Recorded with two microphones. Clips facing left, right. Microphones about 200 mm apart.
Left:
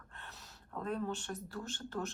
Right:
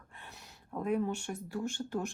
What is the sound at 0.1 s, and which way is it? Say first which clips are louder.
Speech: right 1 dB; 15° right (ahead or behind).